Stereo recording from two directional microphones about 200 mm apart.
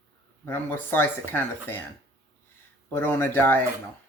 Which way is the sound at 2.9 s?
10° left (ahead or behind).